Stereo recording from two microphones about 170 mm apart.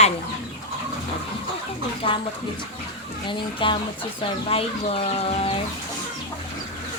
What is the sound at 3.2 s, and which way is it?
A woman's voice, 30° left (ahead or behind).